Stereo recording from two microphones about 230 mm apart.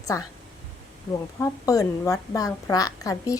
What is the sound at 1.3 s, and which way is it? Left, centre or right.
A woman's voice, centre.